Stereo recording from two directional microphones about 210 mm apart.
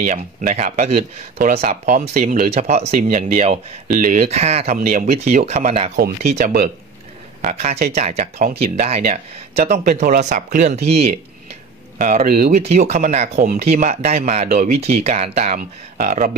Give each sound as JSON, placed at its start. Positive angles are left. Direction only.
{"t": 0.0, "sound": "speech", "side_deg": -35}
{"t": 5.9, "sound": "speech", "side_deg": -50}
{"t": 12.0, "sound": "speech", "side_deg": -40}